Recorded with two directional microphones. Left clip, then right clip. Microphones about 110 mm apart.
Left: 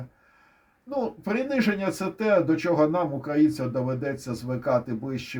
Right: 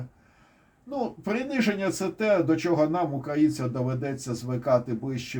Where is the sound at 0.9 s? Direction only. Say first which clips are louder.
Left 2 dB; 45° left (ahead or behind).